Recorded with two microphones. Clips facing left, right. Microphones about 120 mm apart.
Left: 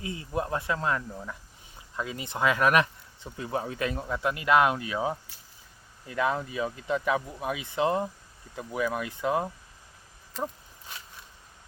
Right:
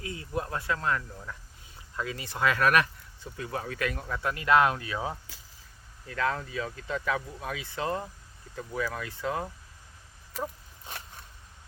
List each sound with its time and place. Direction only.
0.0 s speech: 25° left (ahead or behind)